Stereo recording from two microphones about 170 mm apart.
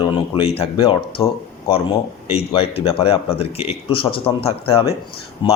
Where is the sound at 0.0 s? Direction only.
35° left (ahead or behind).